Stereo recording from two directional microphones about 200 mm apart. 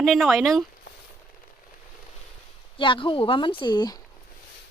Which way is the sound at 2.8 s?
25° left (ahead or behind).